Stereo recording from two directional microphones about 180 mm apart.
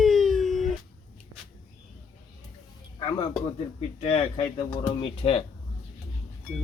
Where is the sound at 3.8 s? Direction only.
35° left (ahead or behind).